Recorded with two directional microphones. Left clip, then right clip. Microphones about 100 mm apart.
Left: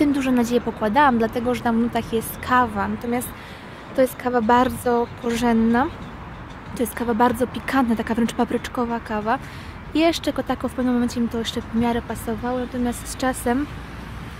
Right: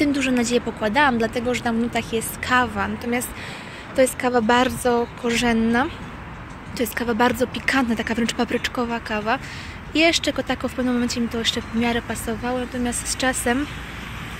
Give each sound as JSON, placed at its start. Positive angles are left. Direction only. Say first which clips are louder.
{"t": 0.0, "sound": "speech", "louder": "left 1 dB", "side_deg": 60}
{"t": 2.8, "sound": "speech", "louder": "even", "side_deg": 45}
{"t": 12.8, "sound": "speech", "louder": "right 1 dB", "side_deg": 50}